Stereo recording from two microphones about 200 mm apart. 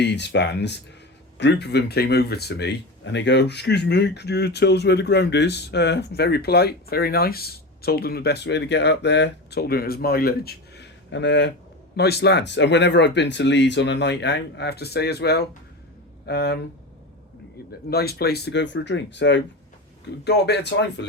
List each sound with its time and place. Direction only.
0.0 s speech: 60° left (ahead or behind)
17.7 s speech: 50° left (ahead or behind)